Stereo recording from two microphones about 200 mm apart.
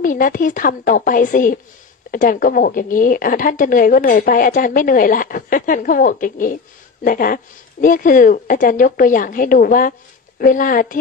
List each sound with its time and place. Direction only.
0.0 s a woman's voice: 45° left (ahead or behind)